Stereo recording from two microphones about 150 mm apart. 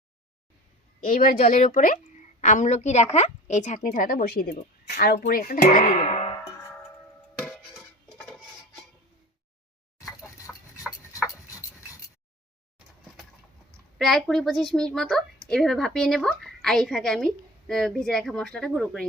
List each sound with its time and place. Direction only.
1.0 s a woman's voice: 70° left (ahead or behind); by 3.8 s 50° left (ahead or behind)
3.8 s speech: 70° left (ahead or behind); by 5.1 s 90° left
5.2 s speech: 80° left
5.8 s music: 45° left (ahead or behind)
7.4 s a sound: 5° left (ahead or behind)
11.1 s a sound: 20° left (ahead or behind)
14.0 s a woman's voice: centre (ahead or behind)